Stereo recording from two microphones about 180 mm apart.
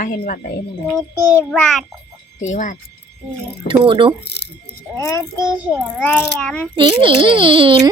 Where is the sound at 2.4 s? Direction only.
45° left (ahead or behind).